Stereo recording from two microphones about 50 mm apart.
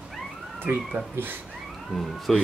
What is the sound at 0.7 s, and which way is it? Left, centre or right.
Speech, right.